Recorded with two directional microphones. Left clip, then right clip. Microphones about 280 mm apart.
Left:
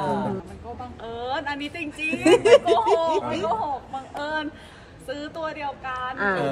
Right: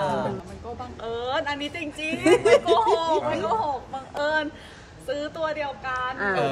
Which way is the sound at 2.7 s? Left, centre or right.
Centre.